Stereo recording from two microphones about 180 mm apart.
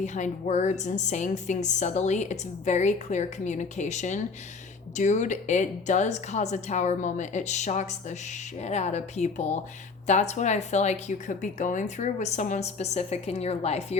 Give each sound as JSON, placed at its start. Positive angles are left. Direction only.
{"t": 0.0, "sound": "a woman's voice", "side_deg": 40}